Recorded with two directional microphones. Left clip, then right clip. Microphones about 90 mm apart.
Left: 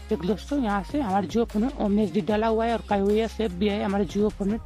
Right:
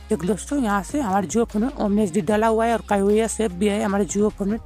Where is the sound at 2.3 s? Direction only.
20° right (ahead or behind).